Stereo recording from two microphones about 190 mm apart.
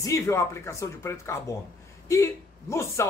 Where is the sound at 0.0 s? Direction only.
15° left (ahead or behind).